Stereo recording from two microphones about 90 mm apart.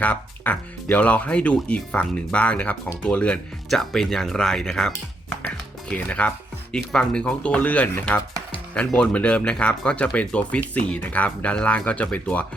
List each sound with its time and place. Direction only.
0.0 s speech: 15° left (ahead or behind)
3.7 s speech: 5° left (ahead or behind)
5.9 s speech: 15° left (ahead or behind)